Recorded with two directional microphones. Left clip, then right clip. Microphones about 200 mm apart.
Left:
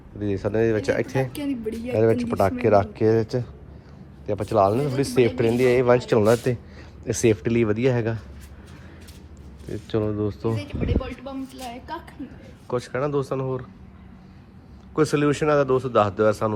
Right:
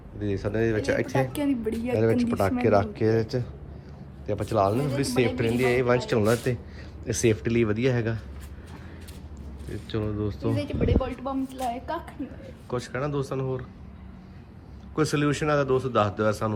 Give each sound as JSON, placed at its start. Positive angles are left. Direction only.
{"t": 0.2, "sound": "speech", "side_deg": -5}
{"t": 9.6, "sound": "speech", "side_deg": 0}
{"t": 10.6, "sound": "speech", "side_deg": -50}
{"t": 12.6, "sound": "speech", "side_deg": -10}
{"t": 14.9, "sound": "speech", "side_deg": -10}